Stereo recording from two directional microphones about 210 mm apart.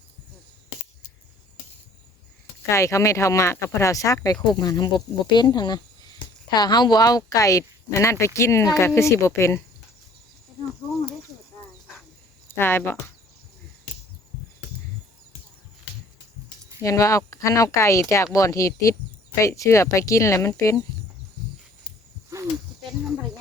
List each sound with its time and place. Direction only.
2.6 s speech: 15° left (ahead or behind)
12.5 s speech: 10° left (ahead or behind)
16.8 s speech: 15° left (ahead or behind)